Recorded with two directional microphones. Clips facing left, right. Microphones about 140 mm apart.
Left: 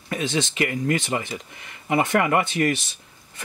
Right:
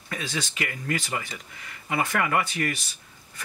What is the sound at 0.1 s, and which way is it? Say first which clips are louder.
Speech: left 7 dB; 20° left (ahead or behind).